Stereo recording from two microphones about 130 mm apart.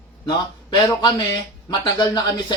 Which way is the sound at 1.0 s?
35° left (ahead or behind).